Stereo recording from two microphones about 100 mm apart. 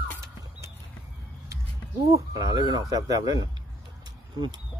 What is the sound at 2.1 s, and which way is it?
Speech, 40° right (ahead or behind).